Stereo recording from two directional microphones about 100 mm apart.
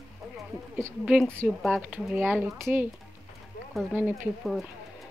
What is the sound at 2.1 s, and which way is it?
Speech, 15° right (ahead or behind).